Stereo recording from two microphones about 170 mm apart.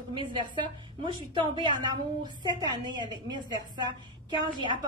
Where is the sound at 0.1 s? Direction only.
25° right (ahead or behind).